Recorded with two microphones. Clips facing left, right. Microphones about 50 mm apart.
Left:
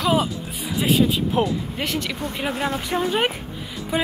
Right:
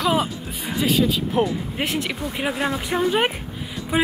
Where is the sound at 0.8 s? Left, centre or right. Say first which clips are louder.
Left 1 dB; left.